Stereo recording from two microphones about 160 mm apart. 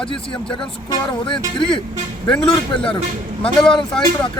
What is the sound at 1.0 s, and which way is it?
Music, 30° left (ahead or behind).